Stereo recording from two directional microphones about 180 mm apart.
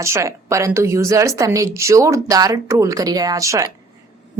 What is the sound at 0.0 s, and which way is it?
Speech, 15° right (ahead or behind).